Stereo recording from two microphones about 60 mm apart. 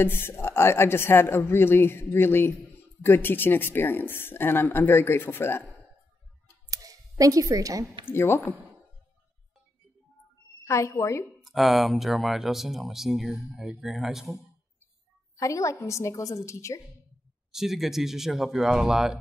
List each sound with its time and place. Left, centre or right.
0.0 s speech: left
6.7 s a sound: right
8.0 s speech: left
10.6 s a woman's voice: left
11.4 s speech: centre
15.3 s a woman's voice: left
17.5 s speech: centre